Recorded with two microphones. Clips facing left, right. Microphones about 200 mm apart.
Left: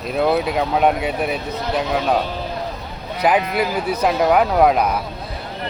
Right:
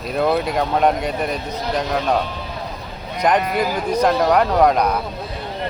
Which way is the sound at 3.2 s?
5° left (ahead or behind).